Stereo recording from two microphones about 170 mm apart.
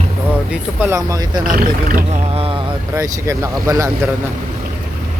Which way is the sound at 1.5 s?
55° right (ahead or behind).